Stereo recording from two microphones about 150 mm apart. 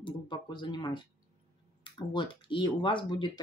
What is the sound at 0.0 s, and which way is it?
Speech, 30° left (ahead or behind).